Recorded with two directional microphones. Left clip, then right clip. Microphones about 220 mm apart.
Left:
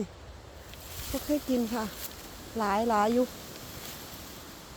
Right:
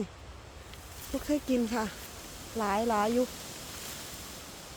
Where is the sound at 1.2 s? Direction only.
10° right (ahead or behind).